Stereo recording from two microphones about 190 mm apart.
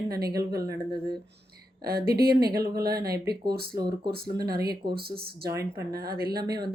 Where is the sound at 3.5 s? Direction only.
55° right (ahead or behind).